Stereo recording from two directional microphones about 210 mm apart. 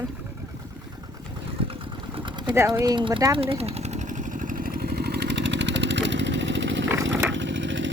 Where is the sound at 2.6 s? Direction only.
15° right (ahead or behind).